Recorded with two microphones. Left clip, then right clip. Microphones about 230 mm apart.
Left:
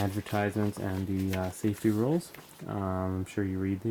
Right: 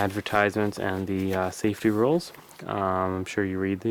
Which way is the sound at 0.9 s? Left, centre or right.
Centre.